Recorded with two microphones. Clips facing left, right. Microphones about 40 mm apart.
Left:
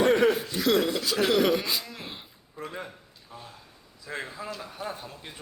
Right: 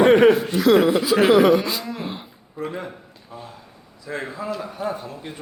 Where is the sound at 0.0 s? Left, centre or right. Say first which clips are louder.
Right 8 dB; right.